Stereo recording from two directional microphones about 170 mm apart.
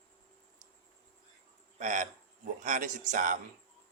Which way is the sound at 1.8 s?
50° right (ahead or behind).